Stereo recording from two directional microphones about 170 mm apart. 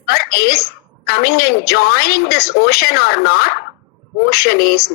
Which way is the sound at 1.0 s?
65° left (ahead or behind).